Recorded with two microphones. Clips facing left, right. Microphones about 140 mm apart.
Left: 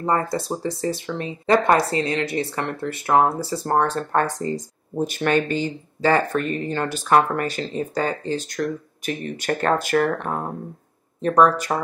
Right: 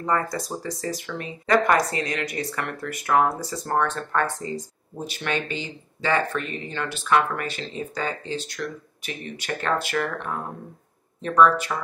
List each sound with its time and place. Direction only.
0.0 s speech: 30° left (ahead or behind)
4.9 s speech: 45° left (ahead or behind)